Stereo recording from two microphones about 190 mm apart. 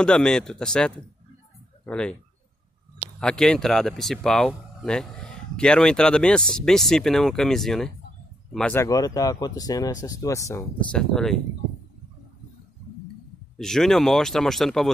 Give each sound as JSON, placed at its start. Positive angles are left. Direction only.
{"t": 0.0, "sound": "speech", "side_deg": 5}
{"t": 3.2, "sound": "speech", "side_deg": 5}
{"t": 8.8, "sound": "speech", "side_deg": 20}
{"t": 10.9, "sound": "speech", "side_deg": 5}
{"t": 13.6, "sound": "speech", "side_deg": 0}